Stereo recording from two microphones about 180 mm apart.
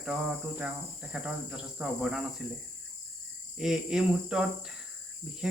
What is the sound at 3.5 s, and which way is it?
Speech, 5° right (ahead or behind).